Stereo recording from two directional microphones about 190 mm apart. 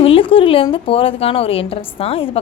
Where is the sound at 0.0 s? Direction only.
30° left (ahead or behind).